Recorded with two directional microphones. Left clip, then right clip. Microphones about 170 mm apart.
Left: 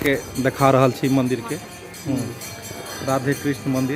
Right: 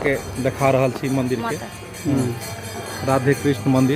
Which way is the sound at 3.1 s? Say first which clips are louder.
Right 3 dB; centre (ahead or behind).